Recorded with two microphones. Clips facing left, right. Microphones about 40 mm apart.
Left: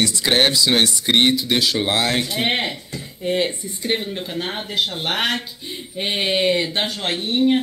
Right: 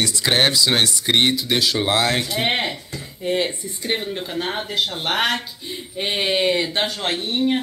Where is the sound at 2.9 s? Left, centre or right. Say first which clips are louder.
Left 1 dB; left.